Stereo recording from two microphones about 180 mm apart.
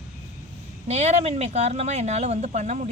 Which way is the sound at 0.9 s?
40° right (ahead or behind).